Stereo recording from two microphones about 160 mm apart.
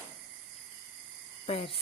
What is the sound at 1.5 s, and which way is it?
Speech, 35° left (ahead or behind).